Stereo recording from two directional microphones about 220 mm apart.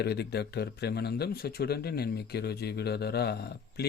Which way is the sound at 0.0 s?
50° left (ahead or behind).